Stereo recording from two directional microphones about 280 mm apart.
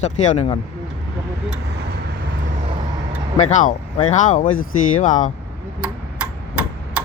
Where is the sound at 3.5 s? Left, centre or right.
Left.